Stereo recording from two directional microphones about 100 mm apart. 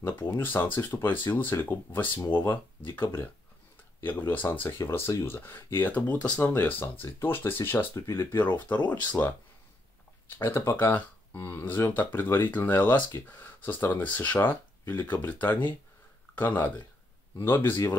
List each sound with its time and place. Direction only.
0.2 s speech: 20° left (ahead or behind)
6.5 s speech: 20° left (ahead or behind)
10.4 s speech: 25° left (ahead or behind)